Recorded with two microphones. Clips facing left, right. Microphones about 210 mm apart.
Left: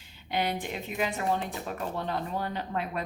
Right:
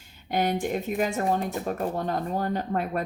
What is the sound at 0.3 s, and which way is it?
Speech, 45° right (ahead or behind).